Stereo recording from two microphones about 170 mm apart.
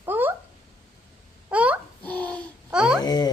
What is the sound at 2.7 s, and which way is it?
Babbling, 5° right (ahead or behind).